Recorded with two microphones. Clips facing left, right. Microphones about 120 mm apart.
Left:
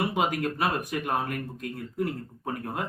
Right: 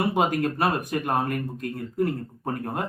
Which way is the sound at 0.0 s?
40° right (ahead or behind).